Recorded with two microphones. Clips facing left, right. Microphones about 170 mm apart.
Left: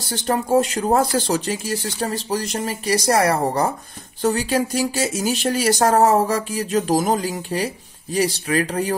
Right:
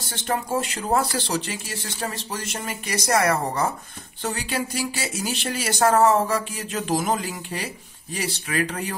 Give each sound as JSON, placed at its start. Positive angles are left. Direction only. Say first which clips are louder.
{"t": 0.1, "sound": "speech", "louder": "left 7 dB", "side_deg": 40}